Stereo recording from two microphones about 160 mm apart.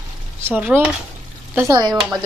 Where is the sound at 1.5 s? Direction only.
20° right (ahead or behind).